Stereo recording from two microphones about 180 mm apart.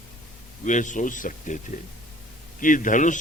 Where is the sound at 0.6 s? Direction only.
45° left (ahead or behind).